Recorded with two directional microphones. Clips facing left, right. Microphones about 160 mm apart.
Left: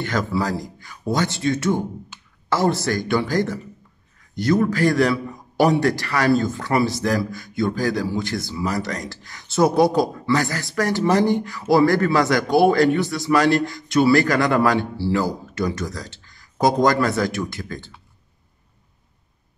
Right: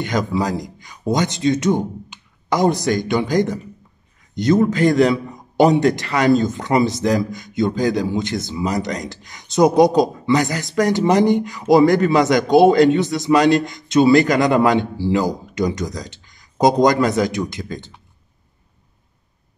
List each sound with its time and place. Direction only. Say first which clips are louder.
0.0 s a man's voice: right 3 dB; 15° right (ahead or behind)